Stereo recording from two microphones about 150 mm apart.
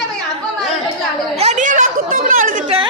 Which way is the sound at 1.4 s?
50° right (ahead or behind).